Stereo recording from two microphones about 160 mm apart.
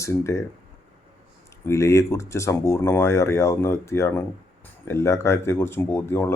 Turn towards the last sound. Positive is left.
turn(degrees=15)  # may be behind; listen again after turning